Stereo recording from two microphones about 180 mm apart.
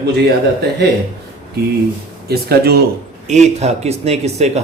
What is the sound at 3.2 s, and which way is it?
Speech, 40° right (ahead or behind).